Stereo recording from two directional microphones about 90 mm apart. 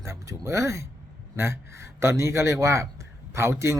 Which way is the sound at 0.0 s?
35° right (ahead or behind).